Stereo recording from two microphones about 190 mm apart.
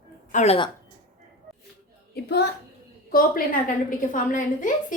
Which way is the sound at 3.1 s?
50° left (ahead or behind).